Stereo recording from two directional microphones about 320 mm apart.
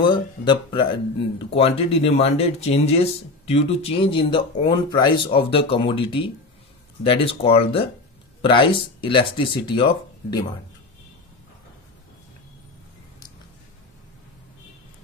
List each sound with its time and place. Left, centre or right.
0.0 s speech: centre